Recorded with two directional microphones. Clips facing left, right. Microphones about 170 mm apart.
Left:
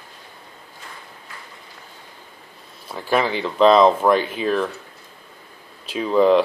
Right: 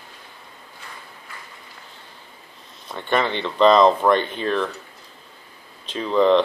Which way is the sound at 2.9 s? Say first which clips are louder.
Left 1 dB; 5° left (ahead or behind).